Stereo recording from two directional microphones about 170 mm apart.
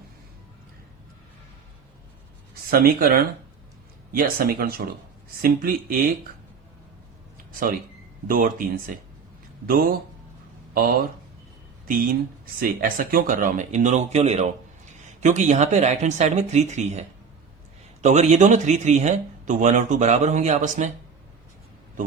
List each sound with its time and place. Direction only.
2.6 s speech: 60° right (ahead or behind)
8.3 s speech: 55° right (ahead or behind)
12.5 s speech: 55° right (ahead or behind)